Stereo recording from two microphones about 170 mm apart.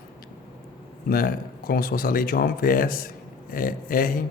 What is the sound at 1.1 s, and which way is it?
Speech, 60° left (ahead or behind).